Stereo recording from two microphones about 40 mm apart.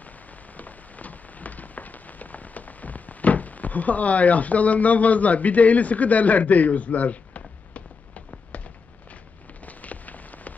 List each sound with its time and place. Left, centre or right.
0.6 s rain on surface: left
8.3 s a sound: left
9.7 s rain on surface: left